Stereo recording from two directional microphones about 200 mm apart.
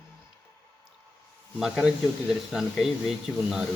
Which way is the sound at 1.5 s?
Centre (ahead or behind).